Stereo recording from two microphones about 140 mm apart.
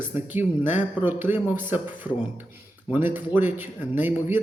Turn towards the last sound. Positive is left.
turn(degrees=-15)  # may be behind; listen again after turning